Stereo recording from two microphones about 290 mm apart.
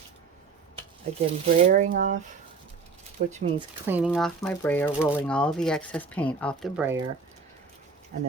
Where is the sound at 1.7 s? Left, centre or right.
Right.